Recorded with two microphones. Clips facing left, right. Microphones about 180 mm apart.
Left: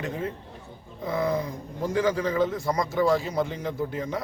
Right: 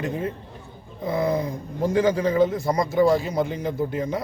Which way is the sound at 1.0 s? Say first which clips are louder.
Right 3 dB; 35° right (ahead or behind).